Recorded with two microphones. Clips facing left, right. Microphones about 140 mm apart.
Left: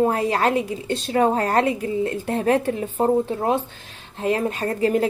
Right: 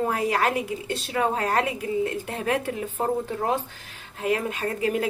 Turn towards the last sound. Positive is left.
turn(degrees=35)  # may be behind; listen again after turning